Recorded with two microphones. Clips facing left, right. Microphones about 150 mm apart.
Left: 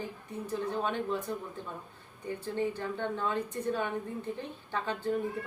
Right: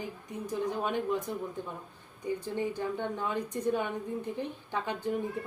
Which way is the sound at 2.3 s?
15° right (ahead or behind).